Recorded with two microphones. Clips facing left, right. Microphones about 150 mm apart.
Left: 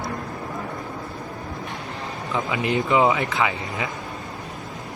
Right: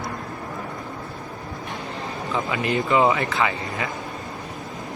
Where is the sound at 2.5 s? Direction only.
20° left (ahead or behind).